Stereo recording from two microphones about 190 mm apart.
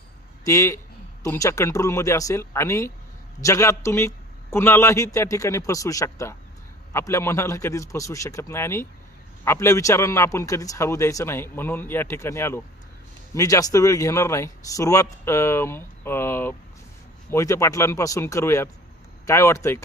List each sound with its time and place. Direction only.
0.4 s a man's voice: 15° left (ahead or behind)